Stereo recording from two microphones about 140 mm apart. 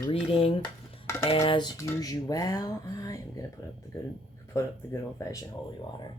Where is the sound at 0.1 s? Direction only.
40° left (ahead or behind); by 3.4 s 25° left (ahead or behind).